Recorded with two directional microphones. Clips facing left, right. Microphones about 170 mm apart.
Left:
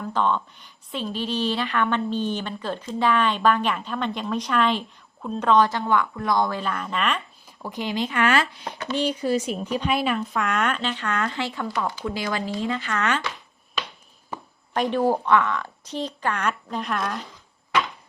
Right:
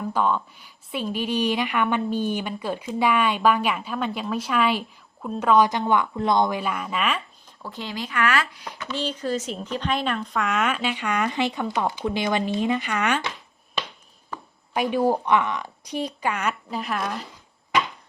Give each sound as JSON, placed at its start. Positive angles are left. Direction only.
{"t": 0.0, "sound": "a woman's voice", "side_deg": -10}
{"t": 7.6, "sound": "speech", "side_deg": 15}
{"t": 9.0, "sound": "a woman's voice", "side_deg": 10}
{"t": 14.7, "sound": "a woman's voice", "side_deg": -10}